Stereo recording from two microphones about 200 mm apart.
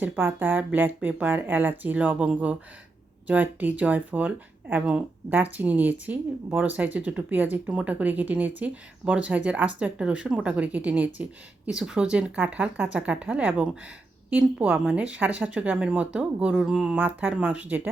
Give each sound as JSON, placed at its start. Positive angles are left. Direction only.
{"t": 0.0, "sound": "speech", "side_deg": -10}